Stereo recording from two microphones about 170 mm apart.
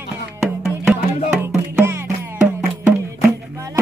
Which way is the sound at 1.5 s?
10° right (ahead or behind).